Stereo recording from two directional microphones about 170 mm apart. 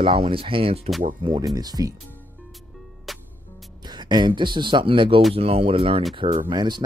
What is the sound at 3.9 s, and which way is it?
Speech, 25° right (ahead or behind).